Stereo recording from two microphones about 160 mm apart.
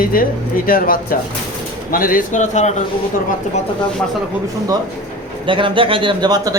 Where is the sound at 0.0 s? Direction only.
65° left (ahead or behind).